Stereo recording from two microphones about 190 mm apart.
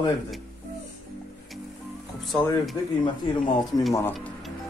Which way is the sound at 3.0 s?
25° left (ahead or behind).